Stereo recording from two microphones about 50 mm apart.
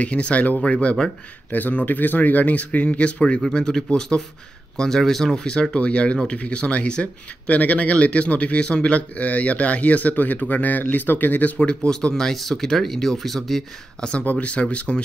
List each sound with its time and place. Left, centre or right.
0.0 s speech: left
1.5 s speech: left
11.9 s speech: centre
14.2 s speech: left